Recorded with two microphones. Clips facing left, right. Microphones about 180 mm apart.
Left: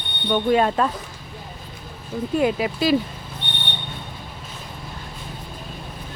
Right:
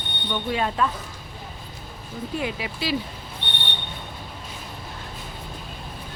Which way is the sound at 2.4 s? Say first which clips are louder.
Left 11 dB; 45° left (ahead or behind).